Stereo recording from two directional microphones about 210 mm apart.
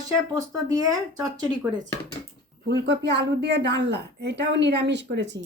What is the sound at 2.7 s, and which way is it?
A woman's voice, 55° right (ahead or behind).